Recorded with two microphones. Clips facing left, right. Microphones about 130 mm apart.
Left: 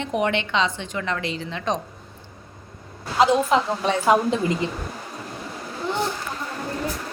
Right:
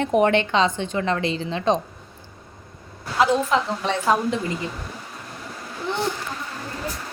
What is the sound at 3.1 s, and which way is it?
Speech, 20° left (ahead or behind).